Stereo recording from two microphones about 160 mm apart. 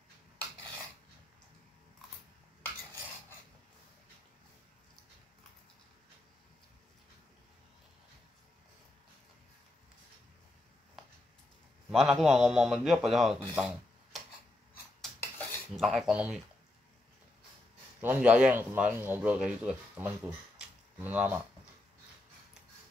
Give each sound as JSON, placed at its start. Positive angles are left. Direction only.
{"t": 11.9, "sound": "a man's voice", "side_deg": 0}
{"t": 13.6, "sound": "a sound", "side_deg": 0}
{"t": 15.0, "sound": "cutlery", "side_deg": 0}
{"t": 18.0, "sound": "a man's voice", "side_deg": -10}